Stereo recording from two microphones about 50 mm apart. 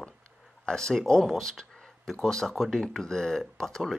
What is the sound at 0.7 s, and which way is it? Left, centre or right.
Speech, centre.